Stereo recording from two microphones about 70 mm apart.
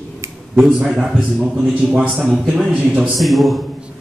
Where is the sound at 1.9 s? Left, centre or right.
Centre.